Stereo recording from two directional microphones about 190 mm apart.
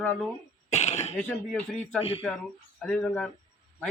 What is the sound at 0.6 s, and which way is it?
Cough, 35° left (ahead or behind).